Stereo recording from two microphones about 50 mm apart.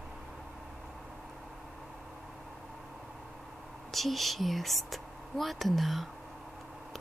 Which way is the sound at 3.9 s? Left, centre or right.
Centre.